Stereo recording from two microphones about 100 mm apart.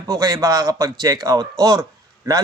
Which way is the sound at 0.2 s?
35° right (ahead or behind).